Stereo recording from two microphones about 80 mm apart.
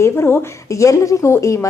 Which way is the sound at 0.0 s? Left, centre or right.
Left.